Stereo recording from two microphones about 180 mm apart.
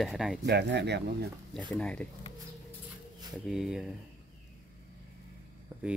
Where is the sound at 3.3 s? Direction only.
Centre (ahead or behind).